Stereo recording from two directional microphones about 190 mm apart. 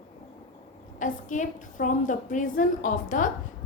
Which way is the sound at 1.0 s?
40° left (ahead or behind).